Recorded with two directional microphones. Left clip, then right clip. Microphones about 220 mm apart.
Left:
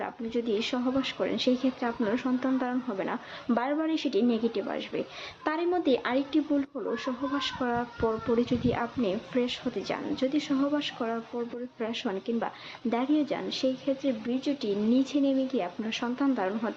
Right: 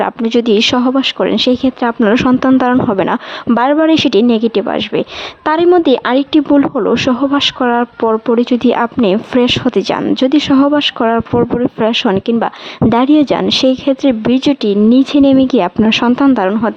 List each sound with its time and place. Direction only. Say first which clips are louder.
0.0 s a woman's voice: right 19 dB; 55° right (ahead or behind)